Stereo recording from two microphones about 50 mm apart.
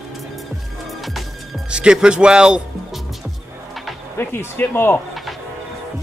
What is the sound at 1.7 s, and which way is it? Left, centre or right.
Speech, centre.